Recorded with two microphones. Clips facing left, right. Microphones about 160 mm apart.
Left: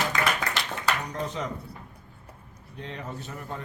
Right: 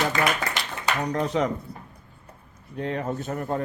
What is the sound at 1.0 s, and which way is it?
Speech, 70° right (ahead or behind).